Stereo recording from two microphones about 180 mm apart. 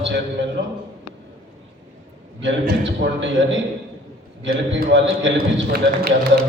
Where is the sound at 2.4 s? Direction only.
90° right.